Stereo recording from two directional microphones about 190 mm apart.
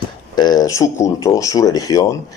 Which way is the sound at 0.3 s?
20° left (ahead or behind).